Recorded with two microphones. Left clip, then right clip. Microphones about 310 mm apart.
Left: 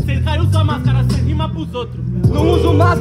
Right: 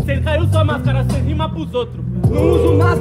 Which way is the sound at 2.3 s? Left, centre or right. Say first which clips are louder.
Right 1 dB; centre.